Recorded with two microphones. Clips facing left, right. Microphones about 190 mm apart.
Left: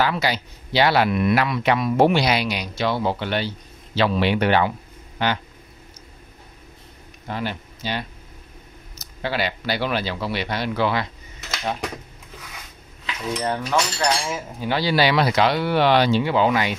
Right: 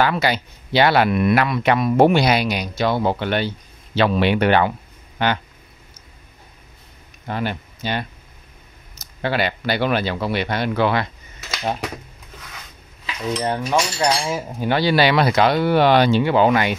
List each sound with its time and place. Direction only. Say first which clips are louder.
0.0 s speech: right 3 dB; 55° right (ahead or behind)
7.2 s speech: right 3 dB; 55° right (ahead or behind)
13.3 s cutlery: right 2 dB; 20° right (ahead or behind)
14.6 s speech: right 3 dB; 55° right (ahead or behind)